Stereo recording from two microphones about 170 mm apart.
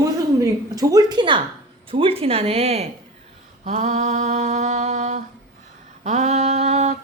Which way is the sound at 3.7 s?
45° right (ahead or behind).